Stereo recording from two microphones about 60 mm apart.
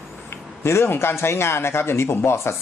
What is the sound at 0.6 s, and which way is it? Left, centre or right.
Speech, left.